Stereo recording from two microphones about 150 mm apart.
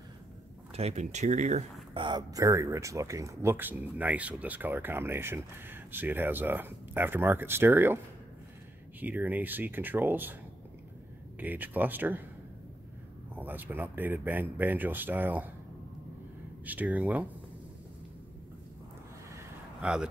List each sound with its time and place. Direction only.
0.7 s speech: 45° right (ahead or behind)
2.0 s speech: 30° right (ahead or behind); by 8.0 s 15° right (ahead or behind)
9.0 s speech: 10° right (ahead or behind)
11.3 s speech: 10° right (ahead or behind)
13.3 s speech: 10° right (ahead or behind)
16.6 s speech: 10° right (ahead or behind)
19.8 s speech: 5° right (ahead or behind)